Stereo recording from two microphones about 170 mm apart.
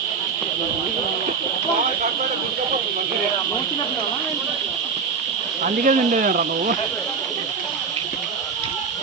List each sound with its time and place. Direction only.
5.6 s speech: 50° right (ahead or behind)